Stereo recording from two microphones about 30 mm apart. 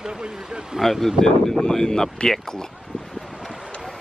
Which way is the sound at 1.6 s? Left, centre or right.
Centre.